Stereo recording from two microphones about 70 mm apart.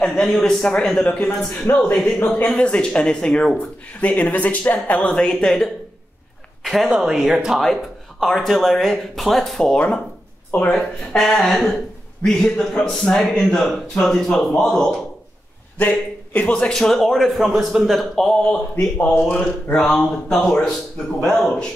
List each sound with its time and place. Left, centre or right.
0.0 s speech: centre; by 2.0 s left
2.5 s speech: centre
5.1 s speech: centre
6.6 s a sound: centre
6.9 s a man's voice: centre
10.5 s speech: left
11.1 s a man's voice: centre
12.2 s speech: centre
16.3 s a man's voice: centre
18.1 s a man's voice: centre
20.3 s speech: centre